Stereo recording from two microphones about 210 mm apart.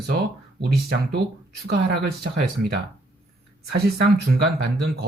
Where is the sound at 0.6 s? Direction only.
50° right (ahead or behind).